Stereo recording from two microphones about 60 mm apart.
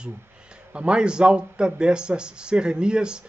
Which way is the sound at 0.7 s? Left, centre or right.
Centre.